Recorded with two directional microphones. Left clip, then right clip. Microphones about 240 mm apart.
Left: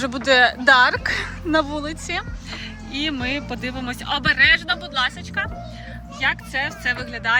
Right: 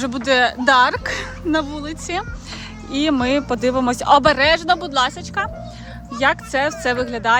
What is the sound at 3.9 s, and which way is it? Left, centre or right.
Speech, right.